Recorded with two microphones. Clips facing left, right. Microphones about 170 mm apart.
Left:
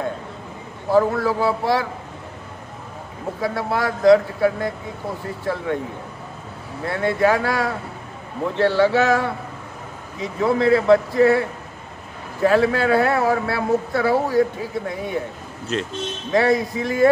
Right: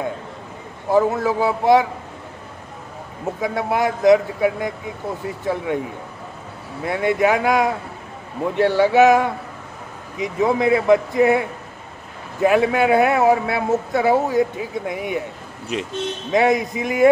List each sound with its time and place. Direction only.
0.9 s speech: 20° right (ahead or behind)
3.3 s a man's voice: 20° right (ahead or behind)
6.8 s a man's voice: 15° right (ahead or behind)
12.4 s a man's voice: 15° right (ahead or behind)